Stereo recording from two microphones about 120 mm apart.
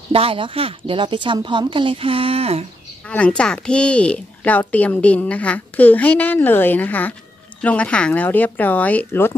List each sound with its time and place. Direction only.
0.1 s speech: 50° right (ahead or behind)
3.1 s speech: 10° left (ahead or behind)